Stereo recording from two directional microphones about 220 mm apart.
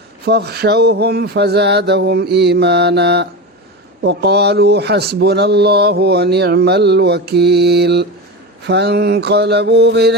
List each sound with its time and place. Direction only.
0.3 s speech: 50° right (ahead or behind)